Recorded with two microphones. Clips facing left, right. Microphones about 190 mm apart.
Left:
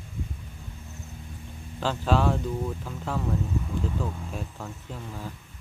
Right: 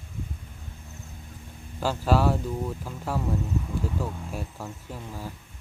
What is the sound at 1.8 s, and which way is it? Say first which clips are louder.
Speech: right 1 dB; 10° right (ahead or behind).